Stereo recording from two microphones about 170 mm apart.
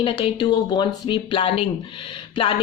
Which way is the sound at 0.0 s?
30° left (ahead or behind).